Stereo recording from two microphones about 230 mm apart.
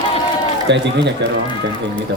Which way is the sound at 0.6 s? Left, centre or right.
Right.